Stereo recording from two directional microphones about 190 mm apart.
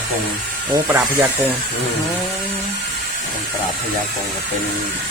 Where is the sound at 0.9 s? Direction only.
10° right (ahead or behind).